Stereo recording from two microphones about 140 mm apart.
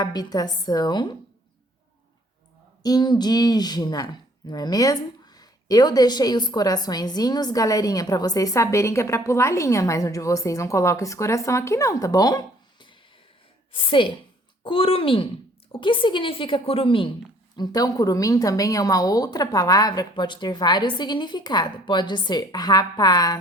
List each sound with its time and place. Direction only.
0.0 s speech: 30° left (ahead or behind)
2.8 s a woman's voice: 30° left (ahead or behind)
17.6 s speech: 30° left (ahead or behind)